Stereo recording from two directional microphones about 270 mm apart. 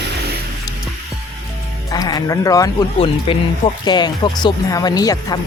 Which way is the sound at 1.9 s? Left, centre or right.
Centre.